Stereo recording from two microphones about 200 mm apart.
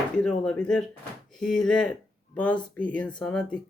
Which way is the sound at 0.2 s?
5° left (ahead or behind).